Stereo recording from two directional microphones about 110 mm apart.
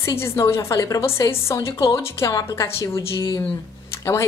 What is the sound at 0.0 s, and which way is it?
A woman's voice, 25° left (ahead or behind).